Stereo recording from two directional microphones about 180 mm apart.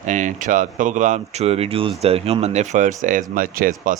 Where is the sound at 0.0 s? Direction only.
45° right (ahead or behind).